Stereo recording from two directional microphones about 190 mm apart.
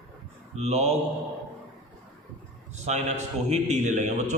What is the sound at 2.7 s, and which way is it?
A man's voice, 35° right (ahead or behind).